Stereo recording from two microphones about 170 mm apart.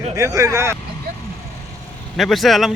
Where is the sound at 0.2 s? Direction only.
20° right (ahead or behind).